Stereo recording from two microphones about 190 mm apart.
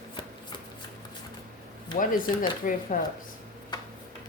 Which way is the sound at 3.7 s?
20° left (ahead or behind).